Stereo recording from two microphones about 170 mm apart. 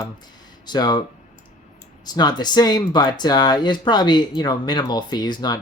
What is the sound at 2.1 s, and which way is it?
Speech, 25° left (ahead or behind).